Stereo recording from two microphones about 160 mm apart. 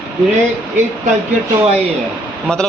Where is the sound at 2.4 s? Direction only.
5° left (ahead or behind).